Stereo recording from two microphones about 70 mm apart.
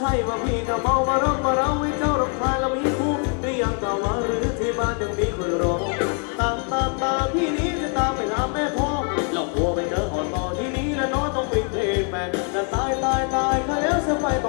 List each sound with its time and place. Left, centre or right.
0.7 s music: centre